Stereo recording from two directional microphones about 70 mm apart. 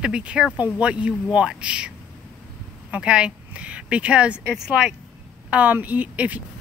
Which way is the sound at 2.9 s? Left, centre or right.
Centre.